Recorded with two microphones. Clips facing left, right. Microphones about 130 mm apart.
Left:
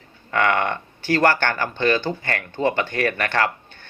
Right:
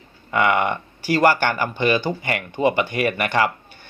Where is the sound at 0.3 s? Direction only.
10° right (ahead or behind).